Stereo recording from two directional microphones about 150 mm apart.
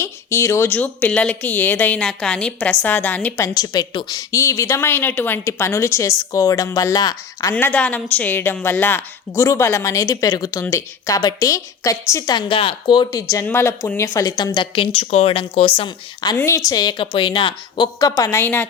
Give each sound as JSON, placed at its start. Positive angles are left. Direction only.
{"t": 0.0, "sound": "a woman's voice", "side_deg": 20}
{"t": 7.5, "sound": "a woman's voice", "side_deg": 10}
{"t": 13.4, "sound": "a woman's voice", "side_deg": 15}
{"t": 16.4, "sound": "a woman's voice", "side_deg": 20}